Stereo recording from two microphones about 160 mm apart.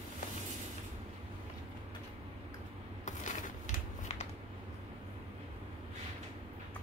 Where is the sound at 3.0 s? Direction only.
50° left (ahead or behind).